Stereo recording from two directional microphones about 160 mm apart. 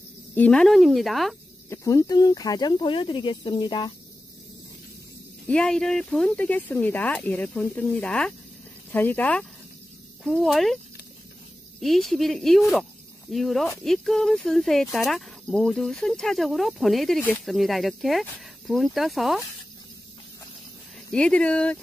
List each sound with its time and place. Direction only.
0.3 s speech: 10° left (ahead or behind)
1.7 s speech: 20° left (ahead or behind)
5.5 s speech: 5° left (ahead or behind)
11.8 s speech: centre (ahead or behind)
21.1 s speech: 5° left (ahead or behind)